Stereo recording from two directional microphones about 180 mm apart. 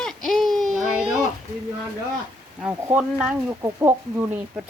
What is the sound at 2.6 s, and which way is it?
Speech, 5° right (ahead or behind).